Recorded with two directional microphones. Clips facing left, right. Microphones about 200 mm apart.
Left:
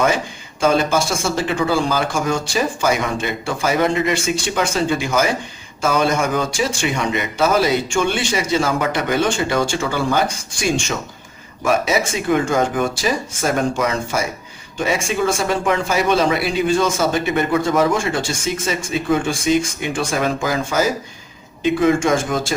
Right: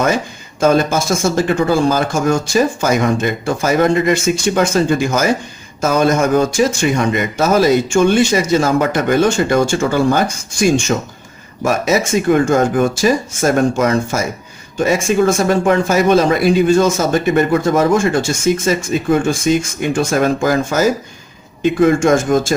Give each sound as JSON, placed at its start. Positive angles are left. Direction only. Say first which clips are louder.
{"t": 0.6, "sound": "speech", "louder": "right 3 dB", "side_deg": -45}